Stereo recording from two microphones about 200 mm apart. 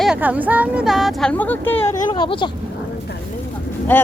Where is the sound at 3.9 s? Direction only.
10° left (ahead or behind).